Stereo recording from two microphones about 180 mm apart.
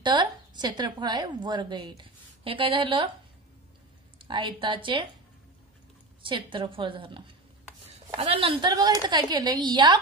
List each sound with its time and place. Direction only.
0.0 s a woman's voice: 25° right (ahead or behind)
4.2 s a woman's voice: 25° right (ahead or behind)
6.2 s a woman's voice: 25° right (ahead or behind)